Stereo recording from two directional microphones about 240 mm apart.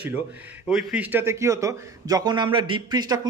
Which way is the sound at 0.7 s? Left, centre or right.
Centre.